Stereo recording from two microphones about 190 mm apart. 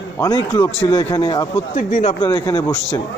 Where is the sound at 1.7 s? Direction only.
40° left (ahead or behind).